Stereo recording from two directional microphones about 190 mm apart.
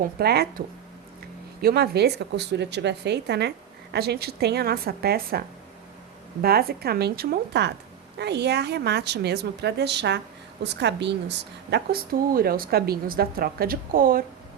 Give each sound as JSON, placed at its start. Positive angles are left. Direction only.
{"t": 0.0, "sound": "a woman's voice", "side_deg": -55}
{"t": 1.6, "sound": "a woman's voice", "side_deg": -55}